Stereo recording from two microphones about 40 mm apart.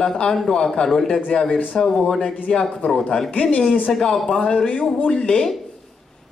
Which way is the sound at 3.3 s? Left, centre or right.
Left.